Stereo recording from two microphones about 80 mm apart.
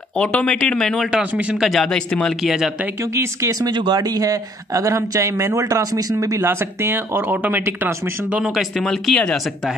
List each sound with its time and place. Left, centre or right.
0.2 s a man's voice: centre
1.3 s speech: centre
1.6 s speech: centre
2.4 s speech: centre
3.0 s speech: right
3.6 s speech: right
8.4 s speech: centre